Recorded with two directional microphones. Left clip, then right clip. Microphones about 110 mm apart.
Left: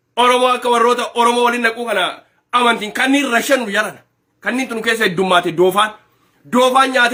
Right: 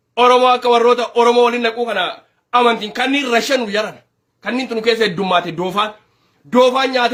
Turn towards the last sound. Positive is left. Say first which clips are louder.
# left 1 dB
turn(degrees=-25)  # may be behind; listen again after turning